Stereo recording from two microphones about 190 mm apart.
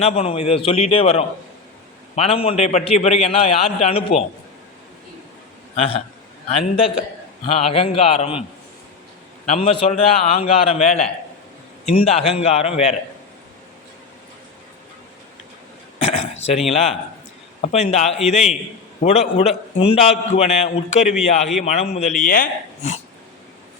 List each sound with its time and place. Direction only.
0.0 s a man's voice: 30° left (ahead or behind)
5.7 s a man's voice: 30° left (ahead or behind)
9.5 s a man's voice: 30° left (ahead or behind)
16.0 s throat clearing: 35° left (ahead or behind)
16.6 s a man's voice: 35° left (ahead or behind)